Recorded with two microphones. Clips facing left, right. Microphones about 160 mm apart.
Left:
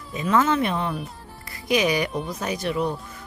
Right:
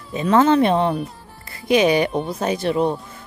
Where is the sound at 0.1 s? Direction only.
30° right (ahead or behind).